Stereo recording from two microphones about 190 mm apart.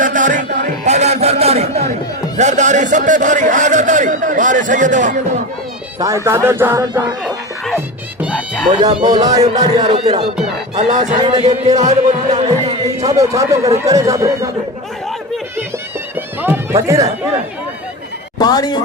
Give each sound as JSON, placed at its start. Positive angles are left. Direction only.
{"t": 0.0, "sound": "music", "side_deg": -45}
{"t": 2.4, "sound": "a sound", "side_deg": -40}
{"t": 6.0, "sound": "speech", "side_deg": -15}
{"t": 8.8, "sound": "speech", "side_deg": -30}
{"t": 10.8, "sound": "speech", "side_deg": -40}
{"t": 12.4, "sound": "music", "side_deg": -35}
{"t": 13.1, "sound": "speech", "side_deg": -15}
{"t": 16.4, "sound": "music", "side_deg": -15}
{"t": 18.3, "sound": "speech", "side_deg": 20}